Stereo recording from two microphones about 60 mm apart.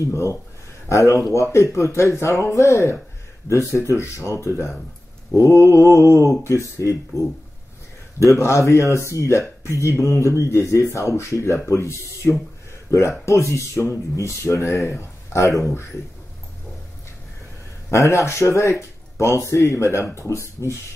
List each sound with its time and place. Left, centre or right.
0.0 s speech: left
17.8 s speech: left